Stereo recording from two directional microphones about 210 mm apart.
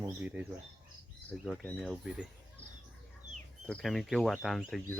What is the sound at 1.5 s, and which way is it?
Speech, 5° left (ahead or behind).